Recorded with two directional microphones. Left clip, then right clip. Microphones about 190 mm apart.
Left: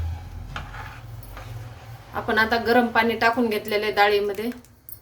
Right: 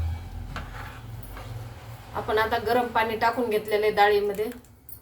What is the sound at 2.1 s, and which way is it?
A woman's voice, 60° left (ahead or behind).